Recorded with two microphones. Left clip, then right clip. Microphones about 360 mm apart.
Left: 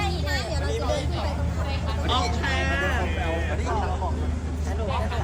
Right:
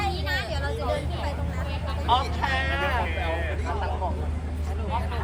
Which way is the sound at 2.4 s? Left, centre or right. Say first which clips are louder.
Even; centre.